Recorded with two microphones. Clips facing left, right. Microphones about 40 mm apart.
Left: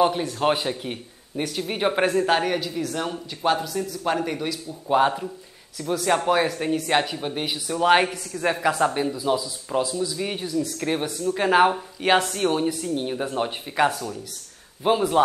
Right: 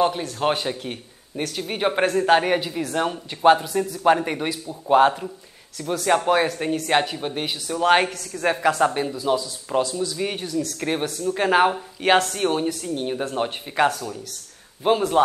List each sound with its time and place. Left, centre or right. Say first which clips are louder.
0.4 s a man's voice: right 1 dB; centre
2.4 s speech: right 2 dB; right
6.0 s speech: right 2 dB; centre
10.4 s speech: even; centre
10.8 s speech: right 1 dB; centre